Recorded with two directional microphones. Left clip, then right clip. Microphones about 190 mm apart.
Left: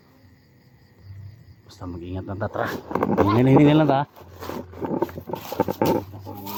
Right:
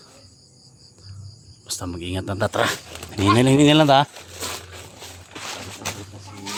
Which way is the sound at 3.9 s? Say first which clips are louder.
Right 7 dB; 30° right (ahead or behind).